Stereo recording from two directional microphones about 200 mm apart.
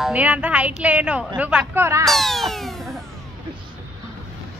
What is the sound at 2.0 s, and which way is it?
Cat, centre (ahead or behind).